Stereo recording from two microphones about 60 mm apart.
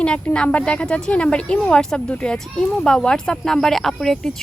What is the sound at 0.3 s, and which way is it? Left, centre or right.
Speech, centre.